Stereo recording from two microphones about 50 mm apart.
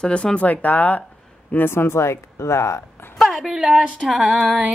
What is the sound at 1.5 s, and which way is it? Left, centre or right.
Speech, left.